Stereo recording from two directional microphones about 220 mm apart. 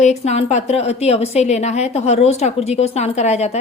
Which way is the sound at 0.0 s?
30° left (ahead or behind).